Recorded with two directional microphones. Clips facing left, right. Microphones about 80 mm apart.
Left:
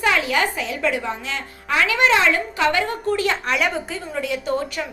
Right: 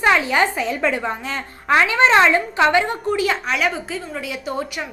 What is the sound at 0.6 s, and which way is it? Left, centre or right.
A woman's voice, right.